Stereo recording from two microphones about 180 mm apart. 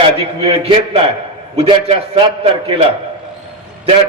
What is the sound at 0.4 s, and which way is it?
Speech, 30° right (ahead or behind).